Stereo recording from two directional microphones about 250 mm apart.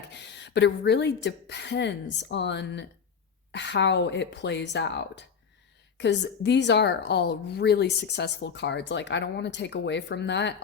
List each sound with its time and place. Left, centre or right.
0.1 s speech: left